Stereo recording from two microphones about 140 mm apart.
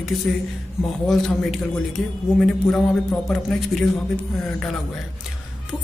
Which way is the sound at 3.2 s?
5° left (ahead or behind).